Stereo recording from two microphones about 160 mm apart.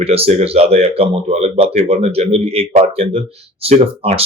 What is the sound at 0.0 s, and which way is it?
Speech, 40° right (ahead or behind).